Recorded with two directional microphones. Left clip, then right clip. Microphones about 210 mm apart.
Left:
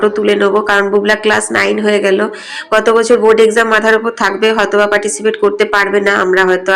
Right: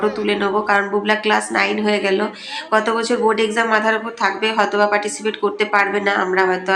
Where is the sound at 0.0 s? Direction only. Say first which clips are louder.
Left 8 dB; 20° left (ahead or behind).